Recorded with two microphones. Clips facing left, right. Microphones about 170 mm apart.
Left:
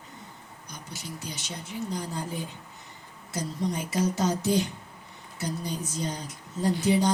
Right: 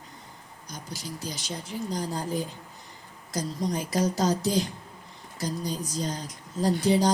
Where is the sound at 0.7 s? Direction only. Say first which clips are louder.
Right 2 dB; 35° right (ahead or behind).